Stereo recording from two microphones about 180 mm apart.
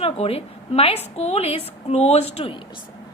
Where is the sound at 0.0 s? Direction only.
35° left (ahead or behind).